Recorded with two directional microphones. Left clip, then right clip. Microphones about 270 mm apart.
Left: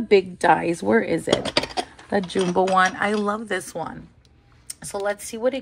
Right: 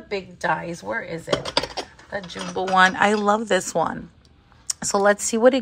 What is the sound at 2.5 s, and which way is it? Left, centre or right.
A woman's voice, centre.